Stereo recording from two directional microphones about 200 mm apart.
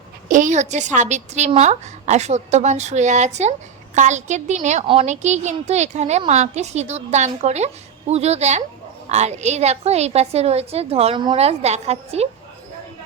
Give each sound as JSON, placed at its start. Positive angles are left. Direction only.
{"t": 0.3, "sound": "a woman's voice", "side_deg": -40}